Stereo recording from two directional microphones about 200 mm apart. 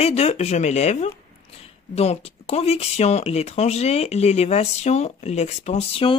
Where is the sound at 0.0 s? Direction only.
30° left (ahead or behind).